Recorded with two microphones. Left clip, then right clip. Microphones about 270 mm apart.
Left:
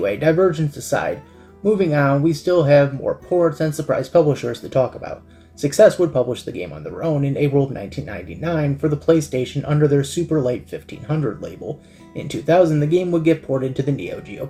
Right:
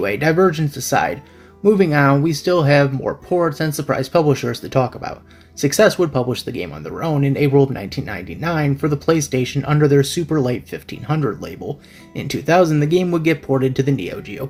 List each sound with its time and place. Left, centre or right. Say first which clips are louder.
0.0 s speech: right 1 dB; right